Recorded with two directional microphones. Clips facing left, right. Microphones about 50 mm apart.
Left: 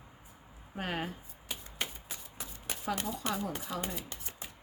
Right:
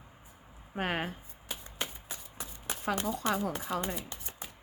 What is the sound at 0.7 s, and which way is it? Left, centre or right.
Speech, right.